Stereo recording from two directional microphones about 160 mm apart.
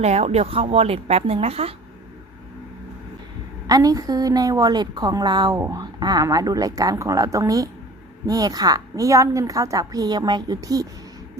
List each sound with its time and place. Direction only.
0.0 s speech: 40° right (ahead or behind)
3.7 s a woman's voice: 25° right (ahead or behind)